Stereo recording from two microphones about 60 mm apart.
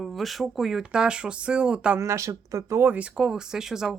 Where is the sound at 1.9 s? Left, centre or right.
Right.